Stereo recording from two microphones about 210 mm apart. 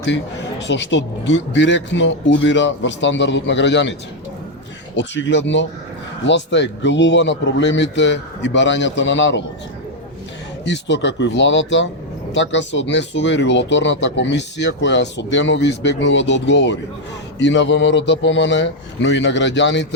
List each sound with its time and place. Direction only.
0.7 s speech: 60° left (ahead or behind)
4.9 s speech: 60° left (ahead or behind)
10.7 s speech: 55° left (ahead or behind)